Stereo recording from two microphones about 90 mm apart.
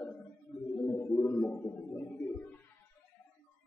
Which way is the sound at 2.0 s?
20° left (ahead or behind).